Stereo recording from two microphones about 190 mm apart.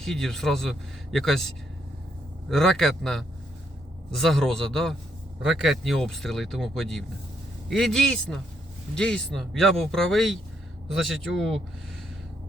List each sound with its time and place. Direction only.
0.0 s a man's voice: centre (ahead or behind)